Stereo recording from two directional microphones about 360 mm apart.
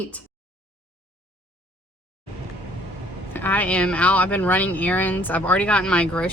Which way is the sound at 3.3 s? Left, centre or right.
Centre.